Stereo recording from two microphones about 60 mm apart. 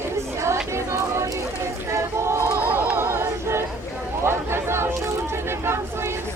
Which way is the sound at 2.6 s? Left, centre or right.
Right.